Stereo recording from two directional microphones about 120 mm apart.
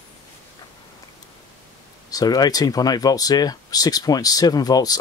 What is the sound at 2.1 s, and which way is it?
Speech, 30° left (ahead or behind).